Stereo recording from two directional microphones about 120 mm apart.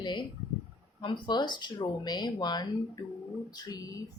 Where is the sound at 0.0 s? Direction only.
40° left (ahead or behind).